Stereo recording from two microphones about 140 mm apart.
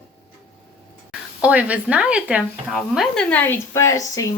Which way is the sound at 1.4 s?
10° right (ahead or behind).